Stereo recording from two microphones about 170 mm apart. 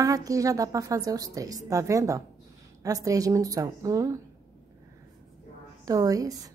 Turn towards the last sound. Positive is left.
turn(degrees=-20)  # may be behind; listen again after turning